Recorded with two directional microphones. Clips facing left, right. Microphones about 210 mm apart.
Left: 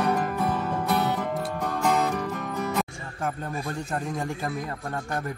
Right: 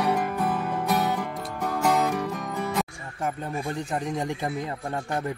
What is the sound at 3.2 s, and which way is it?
A man's voice, 10° right (ahead or behind).